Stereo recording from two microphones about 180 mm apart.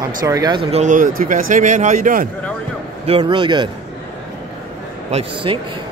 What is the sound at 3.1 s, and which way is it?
Speech, 30° right (ahead or behind).